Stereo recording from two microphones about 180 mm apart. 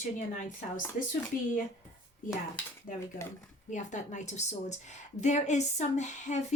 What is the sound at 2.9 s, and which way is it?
A woman's voice, 50° left (ahead or behind).